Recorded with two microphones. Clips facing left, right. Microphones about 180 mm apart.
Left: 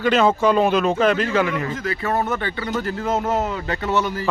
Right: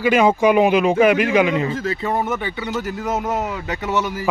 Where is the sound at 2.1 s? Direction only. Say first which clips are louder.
Even; 10° right (ahead or behind).